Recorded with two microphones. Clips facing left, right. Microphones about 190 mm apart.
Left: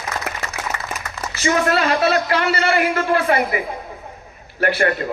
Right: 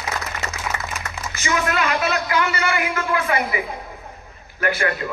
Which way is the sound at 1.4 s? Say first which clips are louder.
Left 5 dB; 35° left (ahead or behind).